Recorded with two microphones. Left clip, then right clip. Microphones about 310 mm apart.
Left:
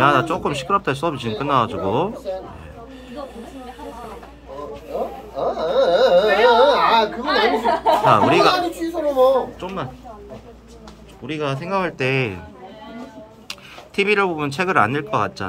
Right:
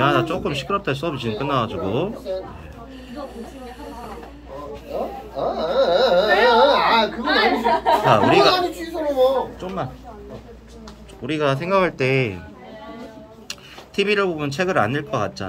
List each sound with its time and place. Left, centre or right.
0.0 s speech: centre
5.3 s carnatic music: left
8.1 s speech: centre
8.5 s a sound: left
11.2 s speech: centre
13.5 s speech: centre